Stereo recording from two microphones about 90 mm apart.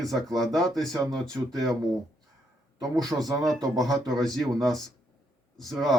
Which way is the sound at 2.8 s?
45° right (ahead or behind).